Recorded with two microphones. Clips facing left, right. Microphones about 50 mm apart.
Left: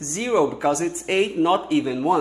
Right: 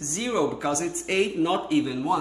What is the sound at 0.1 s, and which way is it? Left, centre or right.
Speech, left.